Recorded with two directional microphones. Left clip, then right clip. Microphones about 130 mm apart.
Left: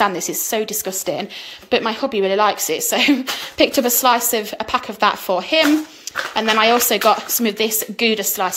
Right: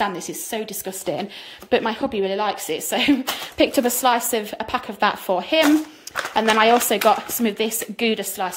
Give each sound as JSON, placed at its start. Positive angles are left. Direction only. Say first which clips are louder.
{"t": 0.0, "sound": "a woman's voice", "louder": "left 6 dB", "side_deg": -10}